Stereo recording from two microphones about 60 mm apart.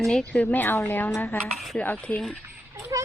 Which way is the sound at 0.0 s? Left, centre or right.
Centre.